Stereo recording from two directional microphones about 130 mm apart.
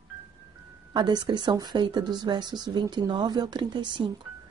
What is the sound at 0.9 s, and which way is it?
Speech, 35° right (ahead or behind).